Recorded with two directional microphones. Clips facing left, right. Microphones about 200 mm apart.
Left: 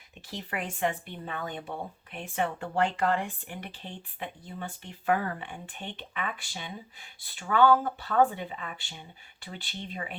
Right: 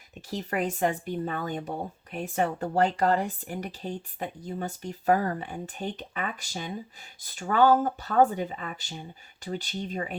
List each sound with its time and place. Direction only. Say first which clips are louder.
0.1 s speech: right 6 dB; 40° right (ahead or behind)